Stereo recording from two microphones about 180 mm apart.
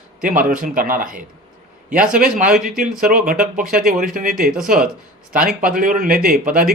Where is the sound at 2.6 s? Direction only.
50° right (ahead or behind).